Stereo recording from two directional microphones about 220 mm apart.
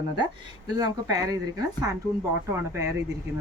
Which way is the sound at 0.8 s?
15° right (ahead or behind).